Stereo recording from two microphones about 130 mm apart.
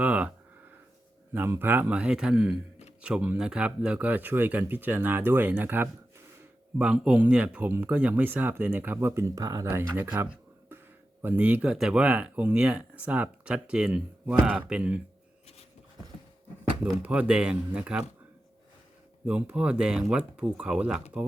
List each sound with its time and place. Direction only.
0.0 s speech: 10° right (ahead or behind)
1.3 s speech: 15° right (ahead or behind)
16.8 s speech: 10° right (ahead or behind)
19.2 s speech: 10° right (ahead or behind)